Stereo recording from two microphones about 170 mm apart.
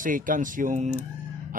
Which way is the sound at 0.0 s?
55° right (ahead or behind).